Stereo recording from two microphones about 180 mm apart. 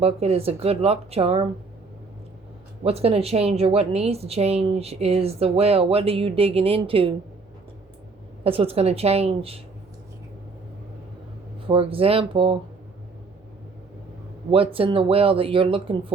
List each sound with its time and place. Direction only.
0.0 s a woman's voice: 35° right (ahead or behind)
2.8 s a woman's voice: 35° right (ahead or behind)
8.4 s a woman's voice: 30° right (ahead or behind)
11.7 s a woman's voice: 30° right (ahead or behind)
14.5 s a woman's voice: 30° right (ahead or behind)